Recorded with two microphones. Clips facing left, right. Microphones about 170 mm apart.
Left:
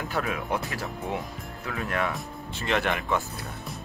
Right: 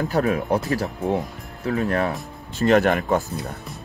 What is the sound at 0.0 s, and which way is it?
Speech, 40° right (ahead or behind).